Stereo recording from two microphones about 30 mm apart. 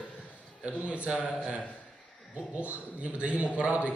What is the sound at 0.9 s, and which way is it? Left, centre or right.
Speech, right.